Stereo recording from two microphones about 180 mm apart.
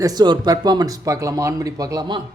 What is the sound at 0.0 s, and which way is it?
Speech, 20° right (ahead or behind).